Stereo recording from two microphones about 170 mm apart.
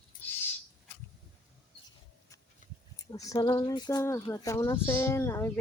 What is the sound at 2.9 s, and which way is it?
Speech, 20° left (ahead or behind).